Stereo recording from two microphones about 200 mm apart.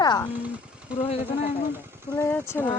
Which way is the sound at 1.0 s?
30° left (ahead or behind).